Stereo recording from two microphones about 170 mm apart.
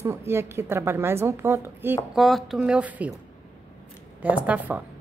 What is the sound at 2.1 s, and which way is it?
A woman's voice, centre (ahead or behind).